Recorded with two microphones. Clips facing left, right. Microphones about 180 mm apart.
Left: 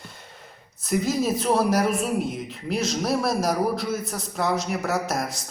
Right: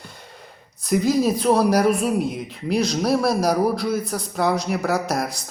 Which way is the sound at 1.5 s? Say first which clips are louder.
Right 3 dB; 5° left (ahead or behind).